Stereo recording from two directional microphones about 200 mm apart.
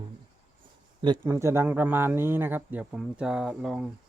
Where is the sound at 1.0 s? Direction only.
15° right (ahead or behind).